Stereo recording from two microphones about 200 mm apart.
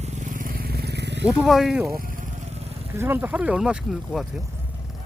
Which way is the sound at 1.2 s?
5° right (ahead or behind).